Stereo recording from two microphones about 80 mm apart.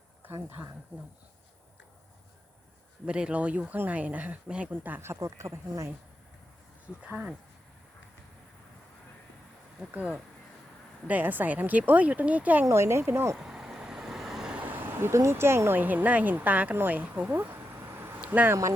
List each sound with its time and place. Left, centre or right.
0.4 s speech: right
3.1 s speech: centre
4.7 s speech: right
6.8 s speech: centre
9.9 s speech: centre
12.6 s speech: right
13.3 s vehicle: centre
14.5 s speech: right
18.2 s a sound: right